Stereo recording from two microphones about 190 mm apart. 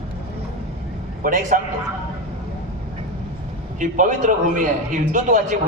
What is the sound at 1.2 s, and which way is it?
Speech, 45° right (ahead or behind).